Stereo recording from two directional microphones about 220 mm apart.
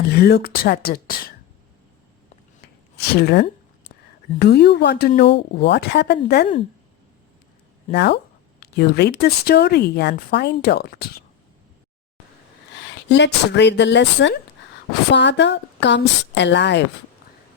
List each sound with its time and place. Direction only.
0.1 s speech: 45° left (ahead or behind)
3.2 s speech: 45° left (ahead or behind)
7.9 s speech: 50° left (ahead or behind)
13.1 s speech: 50° left (ahead or behind)